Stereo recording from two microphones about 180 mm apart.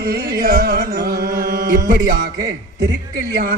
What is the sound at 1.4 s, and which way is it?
Chant, 50° right (ahead or behind).